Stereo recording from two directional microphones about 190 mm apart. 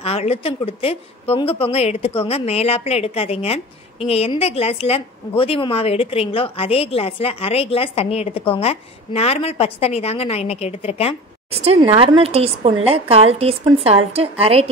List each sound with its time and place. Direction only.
0.0 s a woman's voice: 30° left (ahead or behind)
11.5 s speech: 30° right (ahead or behind)